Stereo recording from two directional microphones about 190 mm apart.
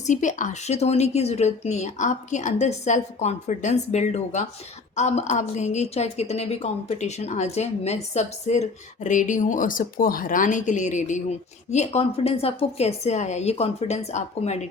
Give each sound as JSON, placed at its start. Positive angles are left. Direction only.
{"t": 0.0, "sound": "speech", "side_deg": 40}